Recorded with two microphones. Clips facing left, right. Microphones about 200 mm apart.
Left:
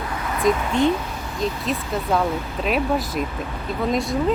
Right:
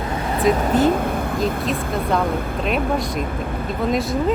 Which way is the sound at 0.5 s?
40° right (ahead or behind).